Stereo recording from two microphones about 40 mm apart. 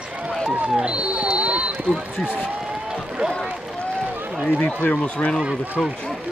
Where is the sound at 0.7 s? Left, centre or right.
Right.